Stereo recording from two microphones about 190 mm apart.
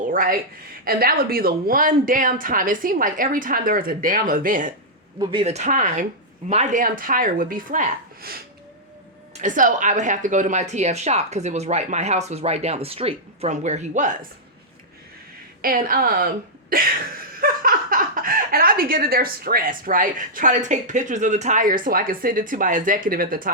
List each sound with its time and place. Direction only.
0.1 s speech: 45° right (ahead or behind)
5.2 s a woman's voice: 25° right (ahead or behind)
15.6 s speech: 50° right (ahead or behind)